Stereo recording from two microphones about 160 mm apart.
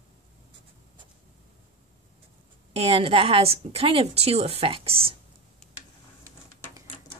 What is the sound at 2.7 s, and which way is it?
A woman's voice, 40° right (ahead or behind).